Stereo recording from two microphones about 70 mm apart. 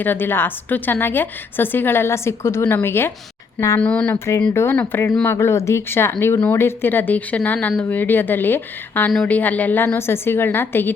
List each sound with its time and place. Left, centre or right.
0.0 s a woman's voice: left
3.8 s speech: centre
4.5 s a woman's voice: left